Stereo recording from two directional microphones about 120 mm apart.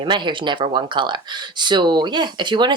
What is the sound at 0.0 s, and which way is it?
Speech, 40° right (ahead or behind).